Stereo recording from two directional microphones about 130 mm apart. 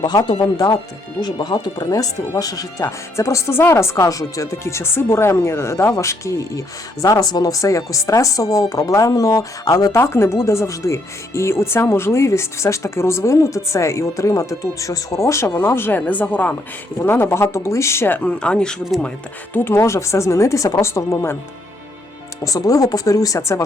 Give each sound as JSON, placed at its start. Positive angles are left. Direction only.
{"t": 0.0, "sound": "speech", "side_deg": 35}
{"t": 19.5, "sound": "speech", "side_deg": 20}
{"t": 22.4, "sound": "speech", "side_deg": 25}